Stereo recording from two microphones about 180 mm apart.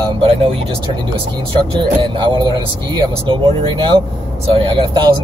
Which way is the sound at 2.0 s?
25° right (ahead or behind).